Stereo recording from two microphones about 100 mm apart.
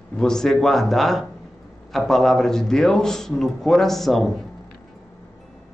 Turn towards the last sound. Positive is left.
turn(degrees=0)  # may be behind; listen again after turning